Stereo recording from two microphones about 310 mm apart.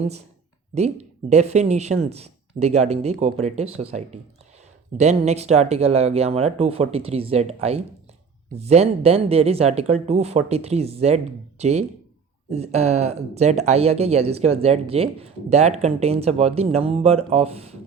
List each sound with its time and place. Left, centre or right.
0.7 s speech: right